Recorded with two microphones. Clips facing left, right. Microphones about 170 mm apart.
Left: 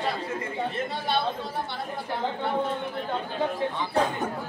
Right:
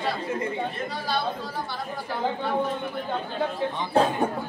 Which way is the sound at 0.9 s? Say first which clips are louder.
Left 1 dB; 25° left (ahead or behind).